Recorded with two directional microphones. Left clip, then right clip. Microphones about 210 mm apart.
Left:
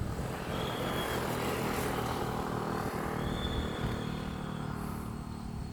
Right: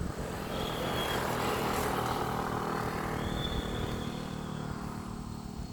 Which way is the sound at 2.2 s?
Centre (ahead or behind).